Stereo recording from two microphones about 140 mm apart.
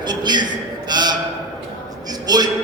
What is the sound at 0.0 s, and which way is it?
Speech, 30° right (ahead or behind).